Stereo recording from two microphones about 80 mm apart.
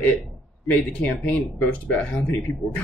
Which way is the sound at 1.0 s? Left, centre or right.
Centre.